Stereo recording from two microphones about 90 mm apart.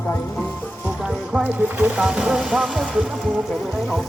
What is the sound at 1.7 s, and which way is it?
Speech, 20° right (ahead or behind).